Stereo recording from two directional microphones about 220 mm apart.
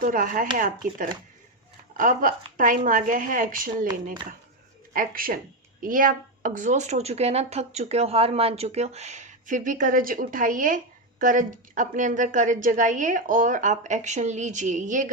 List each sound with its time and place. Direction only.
0.0 s speech: 40° right (ahead or behind)
4.9 s speech: 40° right (ahead or behind)